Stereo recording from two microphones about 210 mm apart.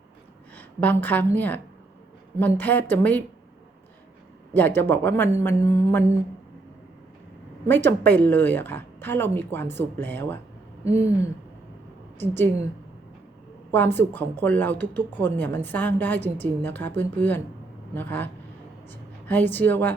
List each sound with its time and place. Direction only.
0.5 s a woman's voice: 10° left (ahead or behind)
4.5 s speech: 10° left (ahead or behind)
7.7 s speech: 10° left (ahead or behind)
10.8 s a sound: 30° right (ahead or behind)
12.2 s speech: 10° left (ahead or behind)
13.7 s a woman's voice: 10° left (ahead or behind)